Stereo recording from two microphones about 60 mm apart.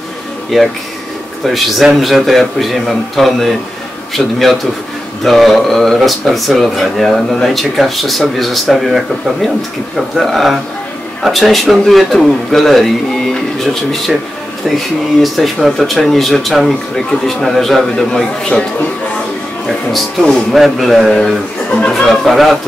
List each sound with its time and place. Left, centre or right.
0.5 s speech: centre
15.3 s speech: centre
19.6 s speech: centre
21.6 s speech: left
21.9 s speech: centre